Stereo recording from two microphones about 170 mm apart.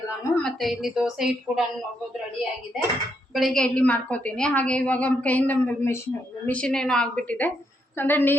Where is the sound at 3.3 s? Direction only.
Centre (ahead or behind).